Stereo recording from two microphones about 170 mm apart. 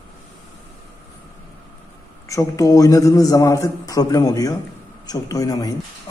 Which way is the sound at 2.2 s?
20° left (ahead or behind).